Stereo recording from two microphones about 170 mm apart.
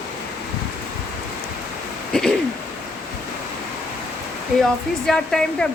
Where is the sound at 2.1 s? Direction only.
5° left (ahead or behind).